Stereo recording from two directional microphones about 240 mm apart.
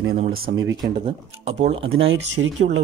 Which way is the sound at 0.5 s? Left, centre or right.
Right.